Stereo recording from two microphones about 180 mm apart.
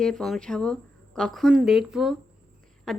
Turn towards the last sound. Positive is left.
turn(degrees=0)  # may be behind; listen again after turning